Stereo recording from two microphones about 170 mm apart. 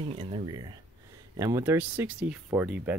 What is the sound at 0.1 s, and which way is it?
Speech, 30° right (ahead or behind).